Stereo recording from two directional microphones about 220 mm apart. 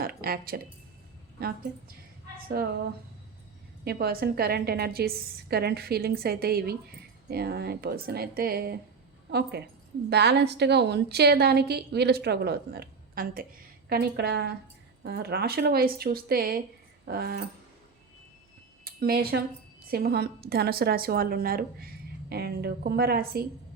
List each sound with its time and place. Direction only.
0.0 s a woman's voice: 45° right (ahead or behind)
3.8 s a woman's voice: 45° right (ahead or behind)
18.9 s a woman's voice: 45° right (ahead or behind)